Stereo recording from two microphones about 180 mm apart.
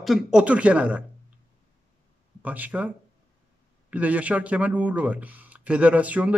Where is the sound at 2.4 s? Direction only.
10° right (ahead or behind).